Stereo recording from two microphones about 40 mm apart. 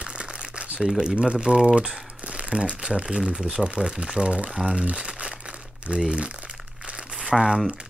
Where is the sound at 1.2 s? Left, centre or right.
Right.